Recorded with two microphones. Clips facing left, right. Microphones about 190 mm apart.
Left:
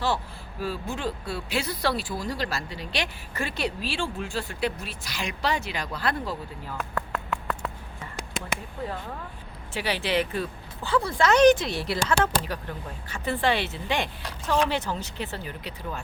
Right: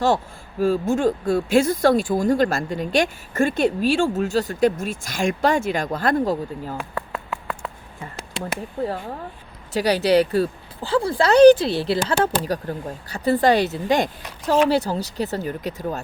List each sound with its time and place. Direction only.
0.6 s speech: 45° right (ahead or behind)
6.7 s a sound: 10° right (ahead or behind)
8.8 s speech: 35° right (ahead or behind)